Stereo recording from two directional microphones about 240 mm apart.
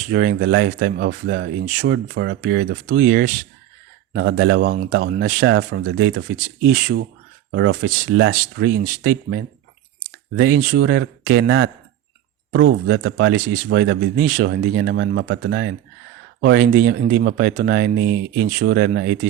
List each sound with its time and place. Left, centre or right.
0.1 s speech: right
5.4 s speech: right
7.5 s speech: right